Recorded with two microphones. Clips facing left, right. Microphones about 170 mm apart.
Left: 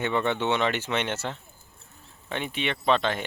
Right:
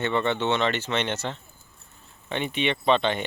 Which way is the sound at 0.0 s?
10° left (ahead or behind).